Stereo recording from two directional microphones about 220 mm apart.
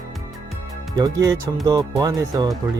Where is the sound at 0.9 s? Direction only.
15° right (ahead or behind).